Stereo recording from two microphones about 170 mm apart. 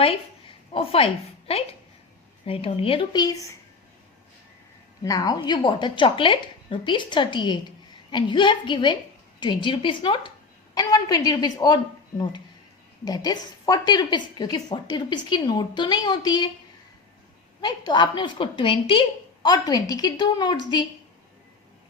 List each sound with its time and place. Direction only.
0.7 s a woman's voice: 35° left (ahead or behind)
5.0 s a woman's voice: 20° left (ahead or behind)
17.6 s a woman's voice: 25° left (ahead or behind)